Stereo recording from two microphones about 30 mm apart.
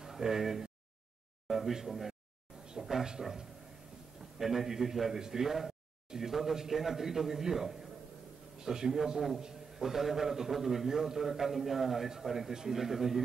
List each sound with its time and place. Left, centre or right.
0.0 s a sound: centre
0.4 s a man's voice: centre
2.8 s a man's voice: centre